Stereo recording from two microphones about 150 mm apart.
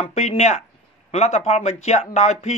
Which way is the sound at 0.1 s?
45° left (ahead or behind).